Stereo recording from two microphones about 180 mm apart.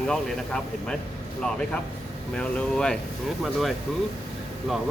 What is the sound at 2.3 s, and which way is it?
Speech, 5° left (ahead or behind).